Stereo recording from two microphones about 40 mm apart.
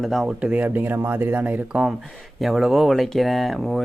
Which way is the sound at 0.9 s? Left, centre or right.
Right.